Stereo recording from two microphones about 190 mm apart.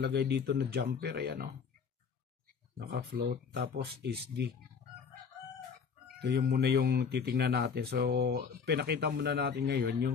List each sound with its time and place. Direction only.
0.0 s speech: 60° right (ahead or behind)
2.8 s speech: 55° right (ahead or behind)
6.1 s speech: 60° right (ahead or behind)